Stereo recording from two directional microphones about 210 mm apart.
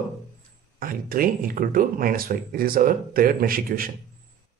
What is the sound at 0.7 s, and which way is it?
Speech, 45° right (ahead or behind).